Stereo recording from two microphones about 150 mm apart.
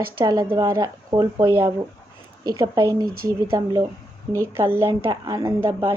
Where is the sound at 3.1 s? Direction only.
80° right.